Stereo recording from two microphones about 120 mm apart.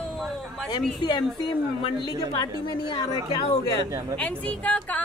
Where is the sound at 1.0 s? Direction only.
40° left (ahead or behind).